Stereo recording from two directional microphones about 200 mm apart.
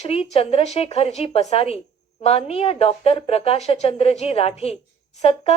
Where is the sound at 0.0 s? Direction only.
30° left (ahead or behind).